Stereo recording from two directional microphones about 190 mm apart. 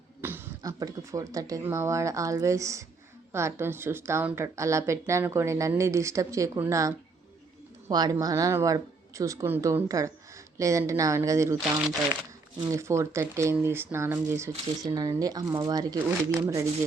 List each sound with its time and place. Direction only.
0.2 s speech: 10° right (ahead or behind)
12.7 s speech: 15° right (ahead or behind)